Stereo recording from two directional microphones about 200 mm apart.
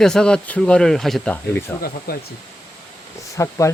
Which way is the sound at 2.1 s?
50° left (ahead or behind).